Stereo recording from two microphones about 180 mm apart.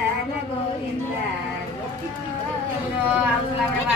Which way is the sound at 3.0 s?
10° right (ahead or behind).